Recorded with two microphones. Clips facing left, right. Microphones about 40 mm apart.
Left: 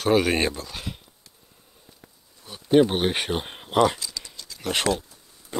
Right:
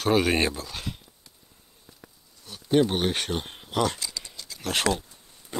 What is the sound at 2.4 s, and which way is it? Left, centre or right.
Speech, centre.